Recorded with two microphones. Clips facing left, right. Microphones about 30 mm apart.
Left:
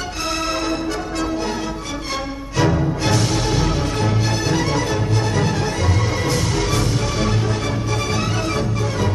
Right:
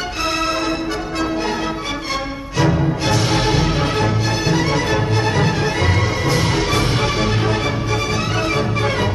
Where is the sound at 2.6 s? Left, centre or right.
Centre.